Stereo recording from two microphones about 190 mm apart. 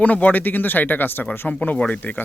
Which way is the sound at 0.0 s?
10° left (ahead or behind).